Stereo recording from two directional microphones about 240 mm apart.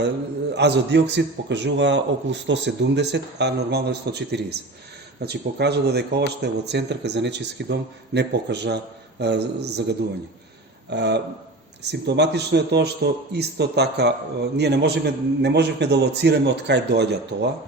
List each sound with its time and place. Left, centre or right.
0.5 s a man's voice: right